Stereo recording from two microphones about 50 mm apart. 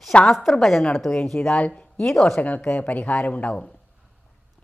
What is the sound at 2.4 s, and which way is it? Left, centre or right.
Speech, left.